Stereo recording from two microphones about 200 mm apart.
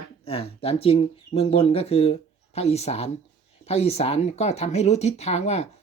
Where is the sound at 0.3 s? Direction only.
30° left (ahead or behind).